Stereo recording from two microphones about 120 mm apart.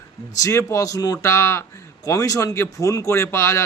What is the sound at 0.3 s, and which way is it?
Speech, 25° left (ahead or behind).